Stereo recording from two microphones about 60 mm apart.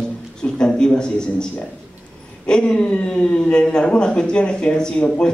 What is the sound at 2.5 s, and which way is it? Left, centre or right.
Speech, centre.